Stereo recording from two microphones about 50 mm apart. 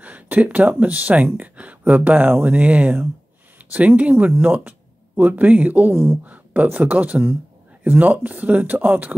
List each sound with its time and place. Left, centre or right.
0.0 s speech: right